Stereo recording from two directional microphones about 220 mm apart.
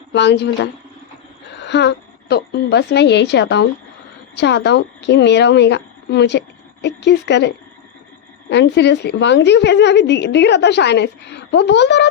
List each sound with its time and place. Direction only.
0.1 s a woman's voice: 50° left (ahead or behind)